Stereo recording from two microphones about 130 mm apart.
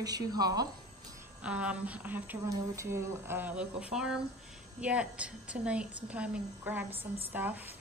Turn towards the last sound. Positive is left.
turn(degrees=-15)  # may be behind; listen again after turning